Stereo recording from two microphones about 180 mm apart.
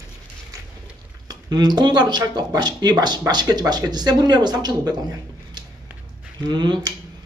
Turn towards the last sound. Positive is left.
turn(degrees=-25)  # may be behind; listen again after turning